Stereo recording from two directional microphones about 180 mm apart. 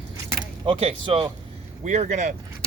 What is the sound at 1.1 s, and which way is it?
Speech, 30° right (ahead or behind).